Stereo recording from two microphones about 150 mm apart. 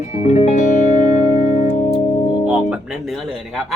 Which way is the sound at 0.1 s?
55° left (ahead or behind).